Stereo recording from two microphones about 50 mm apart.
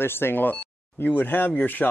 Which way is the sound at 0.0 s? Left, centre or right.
Left.